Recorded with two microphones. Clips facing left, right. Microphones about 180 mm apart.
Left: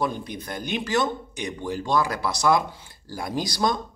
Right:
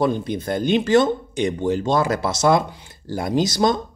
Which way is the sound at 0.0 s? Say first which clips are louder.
Right 7 dB; 25° right (ahead or behind).